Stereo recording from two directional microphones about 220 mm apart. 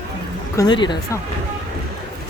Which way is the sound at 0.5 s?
20° left (ahead or behind).